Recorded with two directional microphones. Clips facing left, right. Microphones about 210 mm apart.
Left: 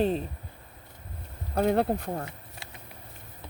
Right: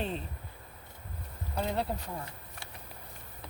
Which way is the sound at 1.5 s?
55° left (ahead or behind).